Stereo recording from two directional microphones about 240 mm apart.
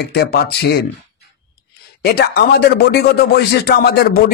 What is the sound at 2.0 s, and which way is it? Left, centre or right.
A man's voice, left.